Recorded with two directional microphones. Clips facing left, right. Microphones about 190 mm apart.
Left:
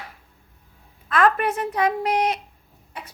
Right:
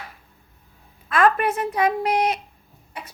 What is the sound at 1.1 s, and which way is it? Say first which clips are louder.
A woman's voice: right 1 dB; 10° right (ahead or behind).